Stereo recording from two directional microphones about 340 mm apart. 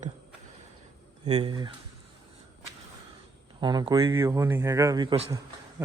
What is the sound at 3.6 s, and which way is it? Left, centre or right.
Speech, centre.